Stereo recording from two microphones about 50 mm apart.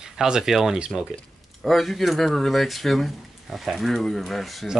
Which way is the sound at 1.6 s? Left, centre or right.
Centre.